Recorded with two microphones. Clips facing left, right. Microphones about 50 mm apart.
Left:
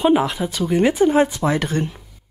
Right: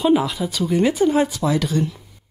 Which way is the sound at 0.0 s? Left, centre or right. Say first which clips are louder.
Left 1 dB; left.